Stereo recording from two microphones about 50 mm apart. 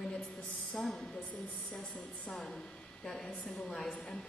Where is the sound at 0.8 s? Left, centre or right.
Left.